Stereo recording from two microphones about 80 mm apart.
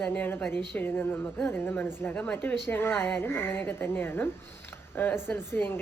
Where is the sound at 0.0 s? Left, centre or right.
Left.